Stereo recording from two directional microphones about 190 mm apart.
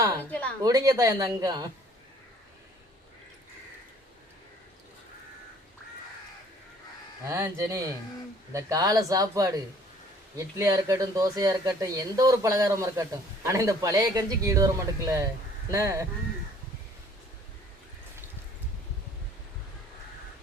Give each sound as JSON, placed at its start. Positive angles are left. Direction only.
{"t": 0.2, "sound": "a woman's voice", "side_deg": 10}
{"t": 0.6, "sound": "speech", "side_deg": -20}
{"t": 7.3, "sound": "a man's voice", "side_deg": -15}